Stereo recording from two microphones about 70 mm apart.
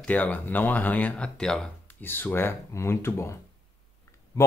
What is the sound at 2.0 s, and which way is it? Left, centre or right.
Speech, left.